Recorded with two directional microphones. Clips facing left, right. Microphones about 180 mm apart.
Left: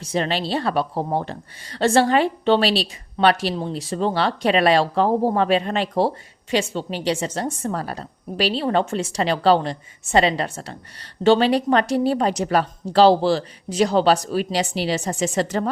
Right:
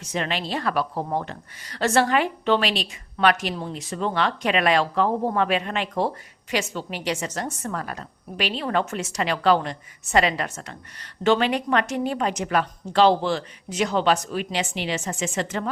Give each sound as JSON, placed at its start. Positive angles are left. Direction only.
{"t": 0.0, "sound": "a woman's voice", "side_deg": 30}